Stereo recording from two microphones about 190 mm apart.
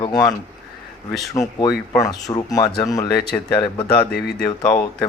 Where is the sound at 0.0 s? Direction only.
20° left (ahead or behind).